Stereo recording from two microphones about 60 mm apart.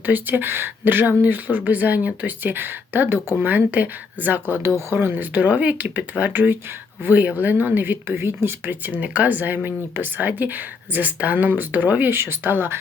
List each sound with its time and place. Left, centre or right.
0.0 s speech: right
8.1 s speech: right